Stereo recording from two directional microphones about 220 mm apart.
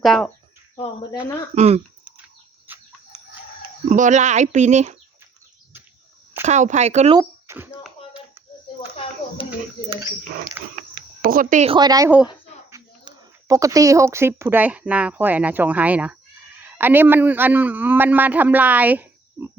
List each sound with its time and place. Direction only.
0.0 s speech: centre (ahead or behind)
1.5 s speech: 30° right (ahead or behind)
2.1 s bird: 10° right (ahead or behind)
3.8 s speech: 35° right (ahead or behind)
6.4 s speech: 30° right (ahead or behind)
7.2 s speech: 10° right (ahead or behind)
9.9 s a man's voice: 15° right (ahead or behind)
11.2 s a man's voice: 40° right (ahead or behind); by 19.5 s 5° right (ahead or behind)